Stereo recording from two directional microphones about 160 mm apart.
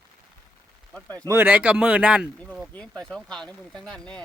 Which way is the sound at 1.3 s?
10° right (ahead or behind).